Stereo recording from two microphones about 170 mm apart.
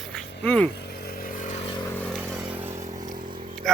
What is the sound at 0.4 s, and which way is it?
Speech, 10° left (ahead or behind).